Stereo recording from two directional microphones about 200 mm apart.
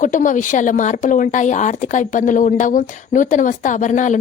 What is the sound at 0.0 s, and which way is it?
Speech, 40° left (ahead or behind).